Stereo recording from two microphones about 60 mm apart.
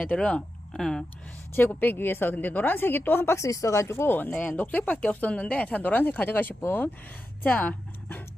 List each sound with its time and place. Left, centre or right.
0.0 s speech: centre
0.7 s speech: centre
1.5 s a woman's voice: left
3.4 s speech: left